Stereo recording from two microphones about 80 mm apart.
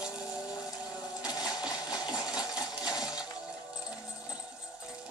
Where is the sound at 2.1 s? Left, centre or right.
Centre.